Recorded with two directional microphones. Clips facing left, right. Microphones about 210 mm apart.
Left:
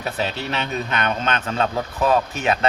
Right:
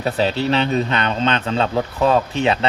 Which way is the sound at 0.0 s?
35° right (ahead or behind).